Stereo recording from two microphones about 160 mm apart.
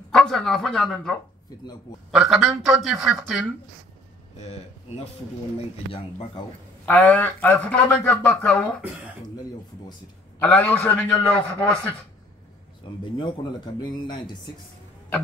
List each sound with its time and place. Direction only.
0.1 s speech: 5° left (ahead or behind)
1.5 s speech: 25° left (ahead or behind)
2.0 s speech: centre (ahead or behind)
4.4 s speech: 40° left (ahead or behind)
6.9 s a man's voice: 10° left (ahead or behind)
10.4 s a man's voice: 10° left (ahead or behind)
13.0 s speech: 30° left (ahead or behind)